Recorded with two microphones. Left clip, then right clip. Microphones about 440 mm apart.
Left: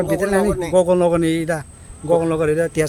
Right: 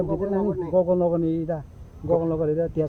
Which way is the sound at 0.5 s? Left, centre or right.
Right.